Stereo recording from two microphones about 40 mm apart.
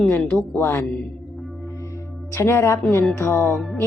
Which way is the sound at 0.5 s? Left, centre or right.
Left.